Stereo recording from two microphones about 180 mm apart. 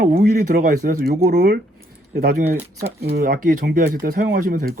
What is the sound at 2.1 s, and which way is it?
Speech, 55° right (ahead or behind).